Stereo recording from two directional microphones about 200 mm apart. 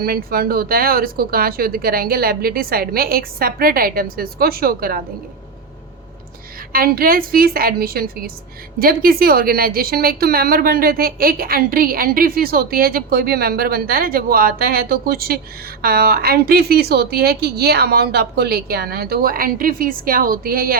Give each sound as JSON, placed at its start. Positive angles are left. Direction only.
{"t": 0.0, "sound": "a woman's voice", "side_deg": -50}
{"t": 6.7, "sound": "a woman's voice", "side_deg": -50}